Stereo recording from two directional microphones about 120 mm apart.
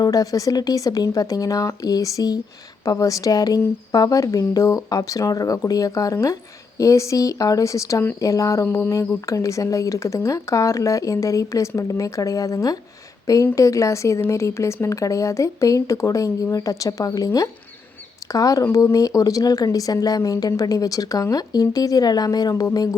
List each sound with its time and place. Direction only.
0.0 s speech: 30° left (ahead or behind)